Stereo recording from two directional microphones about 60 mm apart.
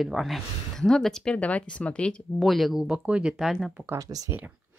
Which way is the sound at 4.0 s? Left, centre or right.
Right.